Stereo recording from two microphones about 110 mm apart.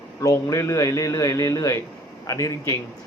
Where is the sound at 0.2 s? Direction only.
30° left (ahead or behind).